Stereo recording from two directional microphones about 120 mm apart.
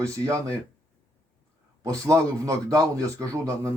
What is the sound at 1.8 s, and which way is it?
A man's voice, 25° right (ahead or behind).